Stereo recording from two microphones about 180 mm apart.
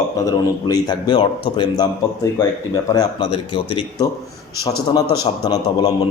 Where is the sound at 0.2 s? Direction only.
20° left (ahead or behind).